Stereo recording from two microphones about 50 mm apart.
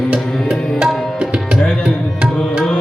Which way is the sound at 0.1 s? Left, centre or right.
Centre.